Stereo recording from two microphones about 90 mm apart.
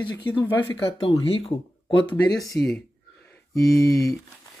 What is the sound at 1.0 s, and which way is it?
Speech, 90° left.